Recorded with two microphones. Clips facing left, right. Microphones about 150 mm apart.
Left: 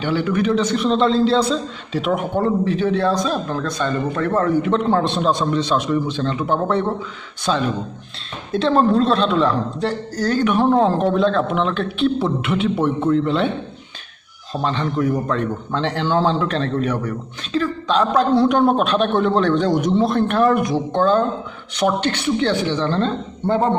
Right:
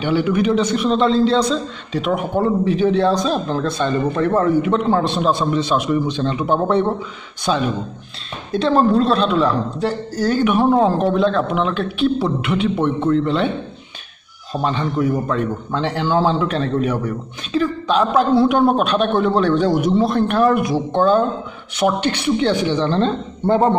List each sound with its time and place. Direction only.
0.0 s a man's voice: 15° right (ahead or behind)
8.5 s a man's voice: centre (ahead or behind)
14.5 s a man's voice: 10° right (ahead or behind)
23.4 s a man's voice: 35° right (ahead or behind)